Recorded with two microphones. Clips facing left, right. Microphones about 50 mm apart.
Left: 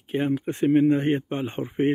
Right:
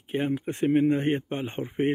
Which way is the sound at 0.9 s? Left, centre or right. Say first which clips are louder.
Left 3 dB; left.